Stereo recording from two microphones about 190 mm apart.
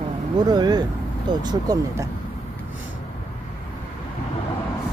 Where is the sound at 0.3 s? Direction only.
20° right (ahead or behind).